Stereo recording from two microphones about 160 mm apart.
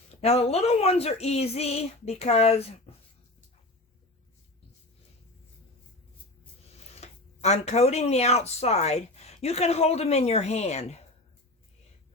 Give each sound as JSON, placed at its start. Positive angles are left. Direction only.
{"t": 0.2, "sound": "speech", "side_deg": 40}
{"t": 2.9, "sound": "a sound", "side_deg": 40}
{"t": 7.0, "sound": "speech", "side_deg": 45}